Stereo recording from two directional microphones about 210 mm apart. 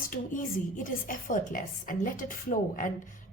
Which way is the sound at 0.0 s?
40° left (ahead or behind).